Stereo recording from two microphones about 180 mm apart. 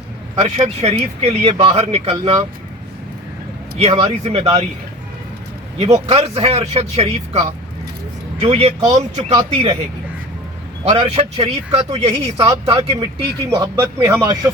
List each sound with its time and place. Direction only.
0.3 s speech: 35° right (ahead or behind)
3.8 s speech: 35° right (ahead or behind)
6.1 s speech: 35° right (ahead or behind)
10.8 s speech: 30° right (ahead or behind)
13.5 s speech: 20° right (ahead or behind)